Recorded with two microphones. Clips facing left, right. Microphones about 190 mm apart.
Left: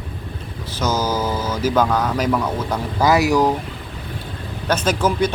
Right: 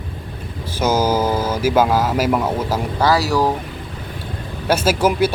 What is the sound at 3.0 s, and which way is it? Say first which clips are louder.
Speech: left 2 dB; 20° left (ahead or behind).